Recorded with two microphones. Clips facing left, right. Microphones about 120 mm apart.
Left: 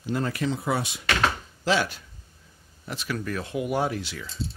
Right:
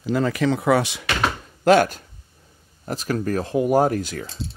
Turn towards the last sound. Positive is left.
turn(degrees=-45)  # may be behind; listen again after turning